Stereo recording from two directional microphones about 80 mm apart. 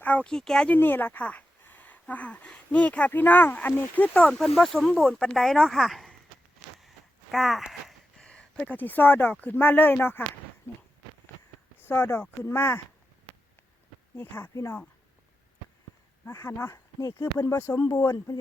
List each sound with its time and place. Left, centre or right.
0.0 s speech: centre
0.3 s speech: centre
0.7 s speech: left
4.3 s speech: centre
6.7 s a sound: centre
8.3 s a sound: centre
8.7 s speech: left
11.8 s speech: left
14.2 s speech: left
14.5 s speech: left
16.2 s speech: left